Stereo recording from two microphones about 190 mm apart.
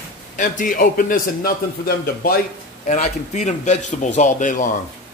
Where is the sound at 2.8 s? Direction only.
40° left (ahead or behind).